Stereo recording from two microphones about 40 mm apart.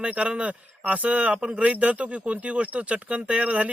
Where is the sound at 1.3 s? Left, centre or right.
Right.